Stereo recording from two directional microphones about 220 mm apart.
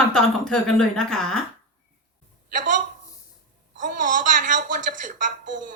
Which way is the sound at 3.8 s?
35° right (ahead or behind).